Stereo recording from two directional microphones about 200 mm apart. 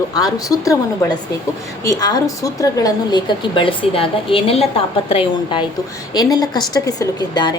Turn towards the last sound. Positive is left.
turn(degrees=20)  # may be behind; listen again after turning